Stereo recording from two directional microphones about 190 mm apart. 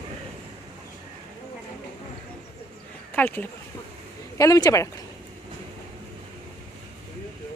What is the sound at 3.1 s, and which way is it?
A woman's voice, 10° left (ahead or behind).